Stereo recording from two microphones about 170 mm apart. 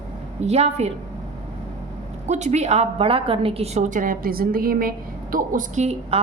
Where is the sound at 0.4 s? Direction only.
40° right (ahead or behind).